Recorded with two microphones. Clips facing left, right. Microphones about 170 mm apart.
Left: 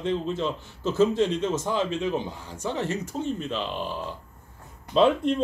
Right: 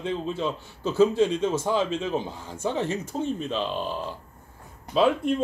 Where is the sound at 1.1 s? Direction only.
20° left (ahead or behind).